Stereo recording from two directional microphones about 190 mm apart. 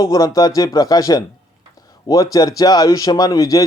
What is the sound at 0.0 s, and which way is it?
A man's voice, 20° left (ahead or behind).